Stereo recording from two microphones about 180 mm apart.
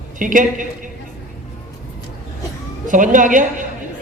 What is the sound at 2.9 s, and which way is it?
Speech, 45° right (ahead or behind).